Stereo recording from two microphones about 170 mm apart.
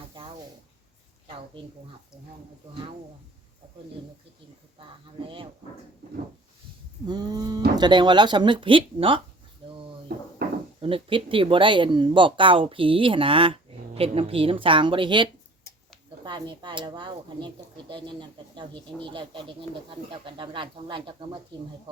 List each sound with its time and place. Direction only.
0.1 s snake: 30° right (ahead or behind)
1.6 s speech: 30° right (ahead or behind)
4.8 s speech: 30° right (ahead or behind)
7.1 s speech: 20° right (ahead or behind)
9.6 s drawer open or close: 30° right (ahead or behind)
10.4 s cupboard open or close: 60° right (ahead or behind)
10.8 s speech: 30° right (ahead or behind)